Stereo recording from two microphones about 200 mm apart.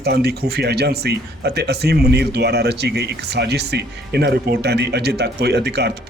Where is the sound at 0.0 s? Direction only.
55° right (ahead or behind).